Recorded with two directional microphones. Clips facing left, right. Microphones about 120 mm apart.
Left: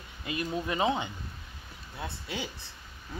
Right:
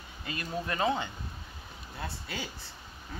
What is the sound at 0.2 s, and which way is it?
Speech, 15° left (ahead or behind).